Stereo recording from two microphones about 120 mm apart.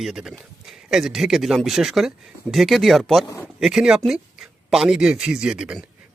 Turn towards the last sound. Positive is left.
turn(degrees=-10)  # may be behind; listen again after turning